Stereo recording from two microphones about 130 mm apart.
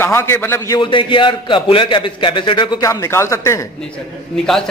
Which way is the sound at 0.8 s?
40° left (ahead or behind).